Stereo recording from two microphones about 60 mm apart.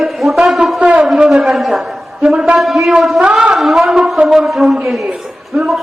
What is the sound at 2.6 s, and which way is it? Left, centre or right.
Speech, centre.